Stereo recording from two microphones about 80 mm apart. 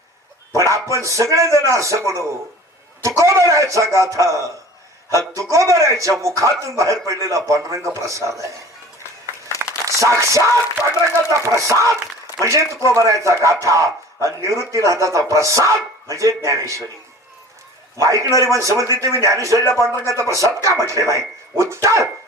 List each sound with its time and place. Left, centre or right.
0.5 s bow-wow: right
1.0 s speech: right
9.8 s speech: right
17.9 s a man's voice: right